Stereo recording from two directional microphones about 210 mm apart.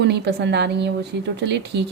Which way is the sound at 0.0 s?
55° right (ahead or behind).